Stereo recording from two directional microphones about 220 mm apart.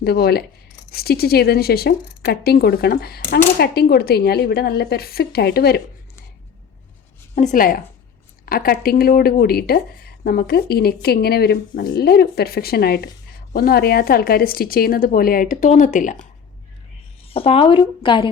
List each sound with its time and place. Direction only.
0.0 s speech: 45° left (ahead or behind)
7.3 s a woman's voice: 35° left (ahead or behind)
17.3 s a woman's voice: 25° left (ahead or behind)